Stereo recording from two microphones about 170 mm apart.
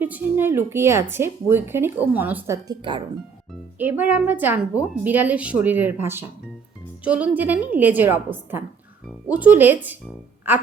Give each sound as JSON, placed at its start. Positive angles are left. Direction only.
{"t": 0.0, "sound": "a woman's voice", "side_deg": -10}
{"t": 2.6, "sound": "speech", "side_deg": -25}
{"t": 3.8, "sound": "a woman's voice", "side_deg": -10}